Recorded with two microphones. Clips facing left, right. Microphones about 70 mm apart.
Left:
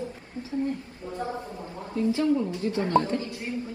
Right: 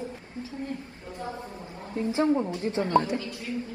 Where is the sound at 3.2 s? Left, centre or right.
Left.